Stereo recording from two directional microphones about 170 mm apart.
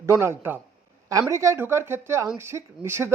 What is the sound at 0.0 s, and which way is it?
A man's voice, 15° right (ahead or behind).